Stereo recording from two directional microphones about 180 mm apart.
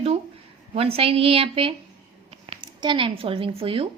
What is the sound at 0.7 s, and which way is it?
A woman's voice, 35° right (ahead or behind).